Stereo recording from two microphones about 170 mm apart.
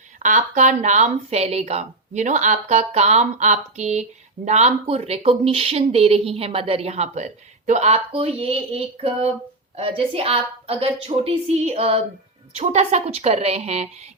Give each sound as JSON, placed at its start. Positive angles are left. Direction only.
{"t": 0.2, "sound": "a woman's voice", "side_deg": -45}